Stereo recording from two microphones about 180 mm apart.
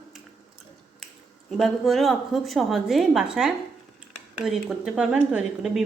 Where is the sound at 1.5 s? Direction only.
Centre (ahead or behind).